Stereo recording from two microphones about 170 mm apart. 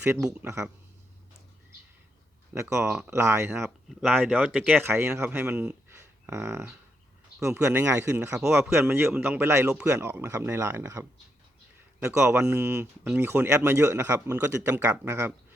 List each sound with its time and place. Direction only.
0.0 s speech: 15° right (ahead or behind)
2.6 s speech: 15° right (ahead or behind)
3.8 s speech: centre (ahead or behind)